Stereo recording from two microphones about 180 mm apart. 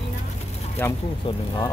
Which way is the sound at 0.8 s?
10° left (ahead or behind).